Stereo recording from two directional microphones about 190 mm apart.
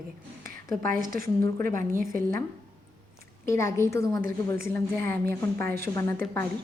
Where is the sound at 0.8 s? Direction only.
45° right (ahead or behind).